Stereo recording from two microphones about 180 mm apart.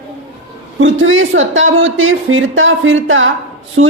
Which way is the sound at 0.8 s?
90° right.